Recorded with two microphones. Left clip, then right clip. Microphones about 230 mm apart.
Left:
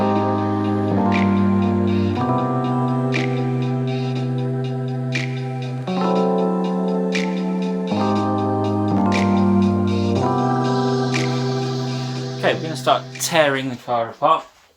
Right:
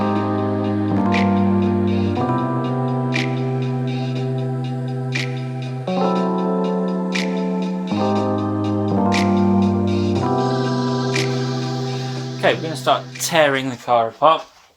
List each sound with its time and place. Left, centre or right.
0.0 s music: centre
5.9 s music: centre
12.4 s music: centre
12.8 s speech: centre